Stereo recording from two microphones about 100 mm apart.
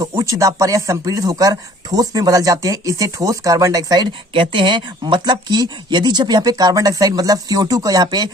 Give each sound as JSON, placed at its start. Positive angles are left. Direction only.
{"t": 0.0, "sound": "speech", "side_deg": -35}